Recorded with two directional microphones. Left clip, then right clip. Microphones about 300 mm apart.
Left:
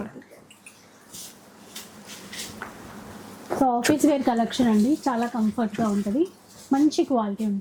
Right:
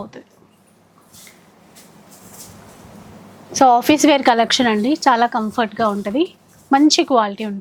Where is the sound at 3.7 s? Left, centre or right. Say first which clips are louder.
Right 7 dB; centre.